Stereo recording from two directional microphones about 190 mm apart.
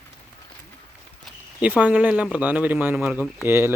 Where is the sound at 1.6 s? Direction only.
10° right (ahead or behind).